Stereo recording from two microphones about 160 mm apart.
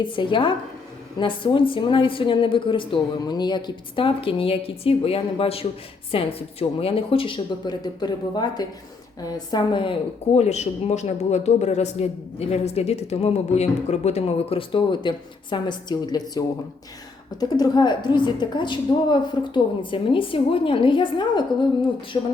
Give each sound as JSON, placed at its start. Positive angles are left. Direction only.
{"t": 0.0, "sound": "a woman's voice", "side_deg": 30}
{"t": 10.3, "sound": "speech", "side_deg": 45}
{"t": 17.6, "sound": "a woman's voice", "side_deg": 25}